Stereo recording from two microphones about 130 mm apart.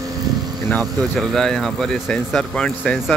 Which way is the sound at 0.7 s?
5° left (ahead or behind).